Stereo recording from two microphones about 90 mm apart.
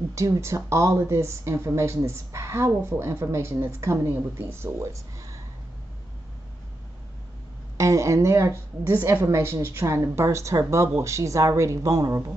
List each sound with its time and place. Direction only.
0.1 s speech: 35° right (ahead or behind)
7.7 s speech: 35° right (ahead or behind)